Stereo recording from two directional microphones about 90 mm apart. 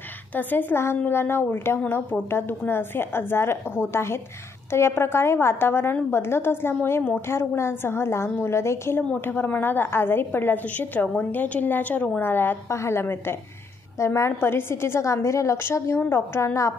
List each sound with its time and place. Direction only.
0.4 s a woman's voice: 20° left (ahead or behind)